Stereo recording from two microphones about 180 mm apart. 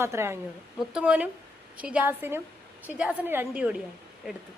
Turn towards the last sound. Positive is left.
turn(degrees=-10)  # may be behind; listen again after turning